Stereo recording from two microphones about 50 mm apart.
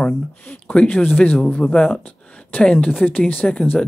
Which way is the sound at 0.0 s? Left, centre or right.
Left.